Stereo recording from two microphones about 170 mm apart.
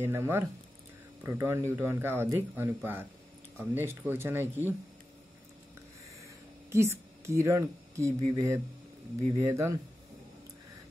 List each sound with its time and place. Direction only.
0.0 s speech: 15° right (ahead or behind)
6.2 s speech: 15° right (ahead or behind)